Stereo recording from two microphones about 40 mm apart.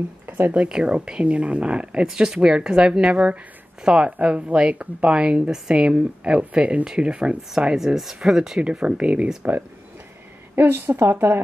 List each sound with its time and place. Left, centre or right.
0.7 s speech: right
2.0 s speech: centre
7.7 s speech: centre
8.8 s speech: right
10.5 s a woman's voice: right